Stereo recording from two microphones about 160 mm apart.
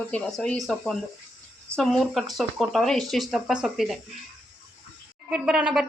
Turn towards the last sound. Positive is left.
turn(degrees=-5)  # may be behind; listen again after turning